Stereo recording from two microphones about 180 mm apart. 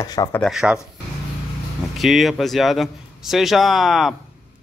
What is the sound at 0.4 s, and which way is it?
Speech, centre (ahead or behind).